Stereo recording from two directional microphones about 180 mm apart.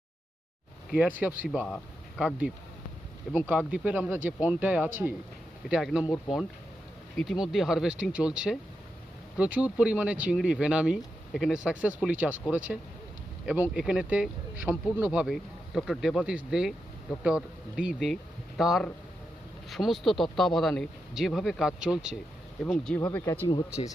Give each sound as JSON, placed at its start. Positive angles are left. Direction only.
{"t": 0.9, "sound": "speech", "side_deg": -10}
{"t": 1.6, "sound": "speech", "side_deg": 0}
{"t": 7.2, "sound": "speech", "side_deg": 0}